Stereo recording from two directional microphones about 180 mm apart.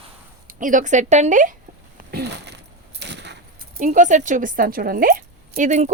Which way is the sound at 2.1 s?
70° right (ahead or behind).